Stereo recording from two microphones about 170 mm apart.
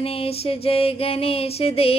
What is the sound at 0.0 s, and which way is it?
Music, 35° left (ahead or behind).